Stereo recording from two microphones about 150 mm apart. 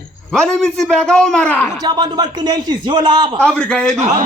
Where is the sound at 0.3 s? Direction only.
5° left (ahead or behind).